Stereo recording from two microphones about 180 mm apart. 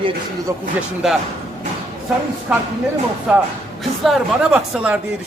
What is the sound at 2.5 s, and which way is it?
A man's voice, 5° right (ahead or behind).